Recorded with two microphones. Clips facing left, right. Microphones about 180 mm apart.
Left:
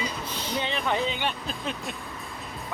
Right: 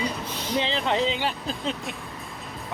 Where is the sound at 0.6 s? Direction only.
30° right (ahead or behind).